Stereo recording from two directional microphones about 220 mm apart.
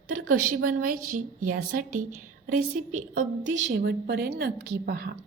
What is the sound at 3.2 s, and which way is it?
A woman's voice, 60° right (ahead or behind).